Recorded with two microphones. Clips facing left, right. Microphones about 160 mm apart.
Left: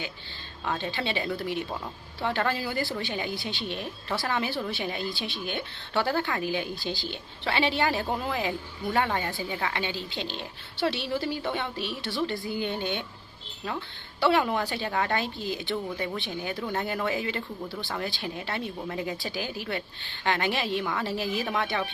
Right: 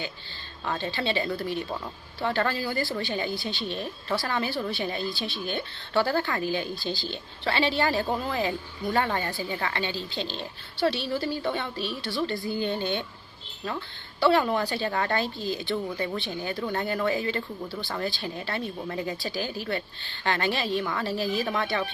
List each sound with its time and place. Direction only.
0.8 s a woman's voice: 15° left (ahead or behind)
16.6 s speech: centre (ahead or behind)
16.8 s a woman's voice: 15° left (ahead or behind)